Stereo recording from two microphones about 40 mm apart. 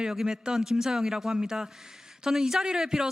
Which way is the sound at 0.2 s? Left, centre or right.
Centre.